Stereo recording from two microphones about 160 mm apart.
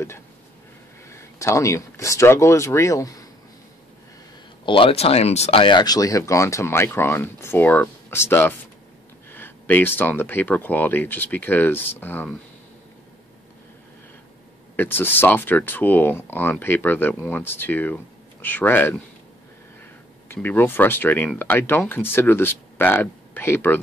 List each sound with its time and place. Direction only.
1.0 s speech: 15° left (ahead or behind)
4.6 s speech: 35° left (ahead or behind); by 12.3 s 10° left (ahead or behind)
14.8 s speech: 15° left (ahead or behind)
20.3 s speech: 10° left (ahead or behind)